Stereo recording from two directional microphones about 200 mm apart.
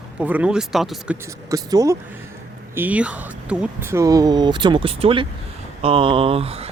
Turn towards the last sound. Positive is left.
turn(degrees=-30)  # may be behind; listen again after turning